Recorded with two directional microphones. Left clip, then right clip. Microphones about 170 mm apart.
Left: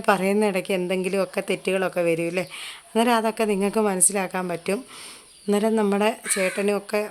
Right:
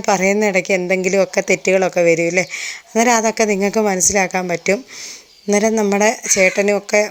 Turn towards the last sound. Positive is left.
turn(degrees=-20)  # may be behind; listen again after turning